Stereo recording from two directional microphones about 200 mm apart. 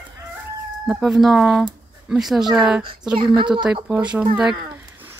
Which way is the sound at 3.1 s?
25° right (ahead or behind).